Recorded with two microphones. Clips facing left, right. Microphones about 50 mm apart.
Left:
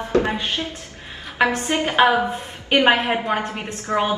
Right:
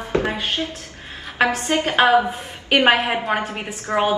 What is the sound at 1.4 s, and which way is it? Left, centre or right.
Speech, centre.